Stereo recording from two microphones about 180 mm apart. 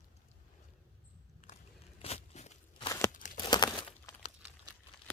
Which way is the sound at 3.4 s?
25° left (ahead or behind).